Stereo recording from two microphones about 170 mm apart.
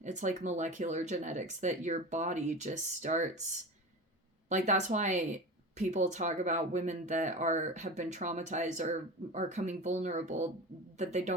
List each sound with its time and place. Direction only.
0.0 s speech: 45° right (ahead or behind)
4.4 s speech: 45° right (ahead or behind)